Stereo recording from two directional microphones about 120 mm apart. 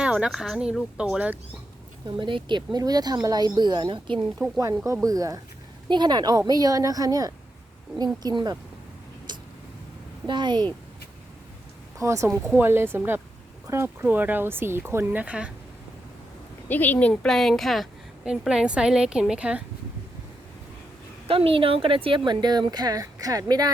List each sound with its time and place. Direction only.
0.0 s speech: 5° right (ahead or behind)
2.0 s speech: 40° right (ahead or behind)
4.4 s speech: 25° right (ahead or behind)
10.2 s speech: 40° right (ahead or behind)
11.9 s speech: 25° right (ahead or behind)
16.6 s speech: 15° left (ahead or behind); by 19.6 s 10° right (ahead or behind)
21.2 s speech: 50° right (ahead or behind); by 23.7 s 35° right (ahead or behind)